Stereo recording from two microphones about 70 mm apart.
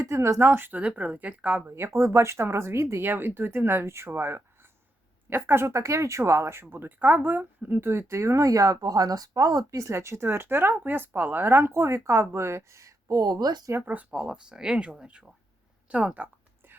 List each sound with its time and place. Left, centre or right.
0.0 s a woman's voice: right
2.0 s speech: right
7.9 s speech: right
9.8 s speech: right
13.1 s speech: right
13.8 s a woman's voice: right
14.1 s speech: centre